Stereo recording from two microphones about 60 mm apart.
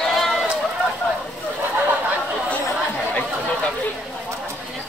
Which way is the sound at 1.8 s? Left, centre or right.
Right.